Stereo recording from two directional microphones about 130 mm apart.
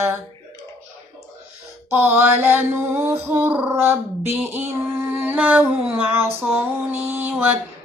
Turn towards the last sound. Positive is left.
turn(degrees=-15)  # may be behind; listen again after turning